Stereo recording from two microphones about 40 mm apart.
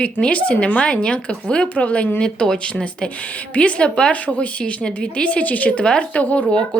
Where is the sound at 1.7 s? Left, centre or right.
Left.